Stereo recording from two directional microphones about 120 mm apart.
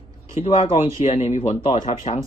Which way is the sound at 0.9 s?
65° left (ahead or behind).